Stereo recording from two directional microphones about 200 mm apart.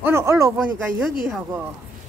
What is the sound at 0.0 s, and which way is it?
Speech, 15° right (ahead or behind).